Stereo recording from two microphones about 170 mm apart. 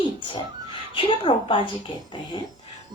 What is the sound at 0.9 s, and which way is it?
Speech, 30° left (ahead or behind).